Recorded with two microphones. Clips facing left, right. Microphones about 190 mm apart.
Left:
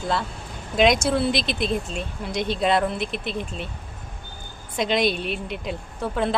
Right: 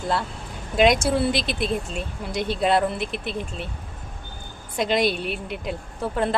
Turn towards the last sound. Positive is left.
turn(degrees=-5)  # may be behind; listen again after turning